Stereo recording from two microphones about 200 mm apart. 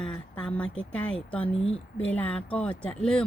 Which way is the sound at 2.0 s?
5° left (ahead or behind).